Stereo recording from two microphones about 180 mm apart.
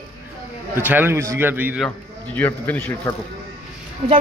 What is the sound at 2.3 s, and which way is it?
Speech, 10° left (ahead or behind).